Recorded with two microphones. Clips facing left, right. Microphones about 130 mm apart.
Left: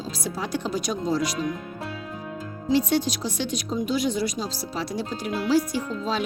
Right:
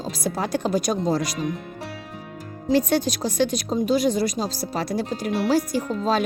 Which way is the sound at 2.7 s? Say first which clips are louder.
Right 2 dB; 50° right (ahead or behind).